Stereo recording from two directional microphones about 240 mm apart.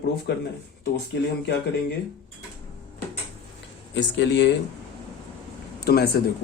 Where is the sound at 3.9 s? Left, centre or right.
Left.